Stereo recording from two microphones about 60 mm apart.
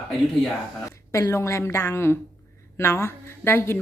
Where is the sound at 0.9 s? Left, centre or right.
Left.